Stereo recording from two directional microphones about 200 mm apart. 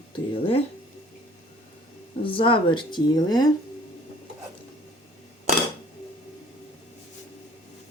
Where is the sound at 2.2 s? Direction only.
25° left (ahead or behind).